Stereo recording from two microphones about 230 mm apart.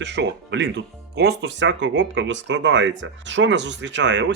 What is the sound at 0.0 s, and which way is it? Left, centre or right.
Speech, right.